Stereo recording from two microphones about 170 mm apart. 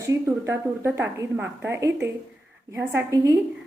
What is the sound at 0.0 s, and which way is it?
A woman's voice, 15° right (ahead or behind).